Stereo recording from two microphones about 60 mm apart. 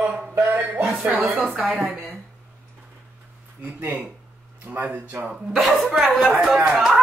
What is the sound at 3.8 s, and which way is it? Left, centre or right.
Speech, right.